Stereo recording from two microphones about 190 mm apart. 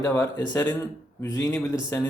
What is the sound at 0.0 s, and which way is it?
Speech, 15° left (ahead or behind).